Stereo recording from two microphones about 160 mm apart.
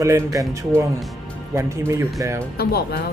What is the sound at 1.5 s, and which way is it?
Speech, 20° right (ahead or behind).